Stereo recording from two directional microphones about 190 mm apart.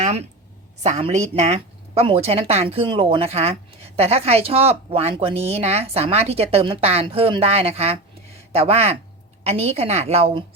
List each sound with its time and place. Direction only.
0.8 s speech: 35° right (ahead or behind)